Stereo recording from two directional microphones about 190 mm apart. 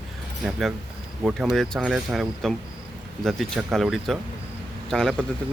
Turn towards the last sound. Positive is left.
turn(degrees=0)  # may be behind; listen again after turning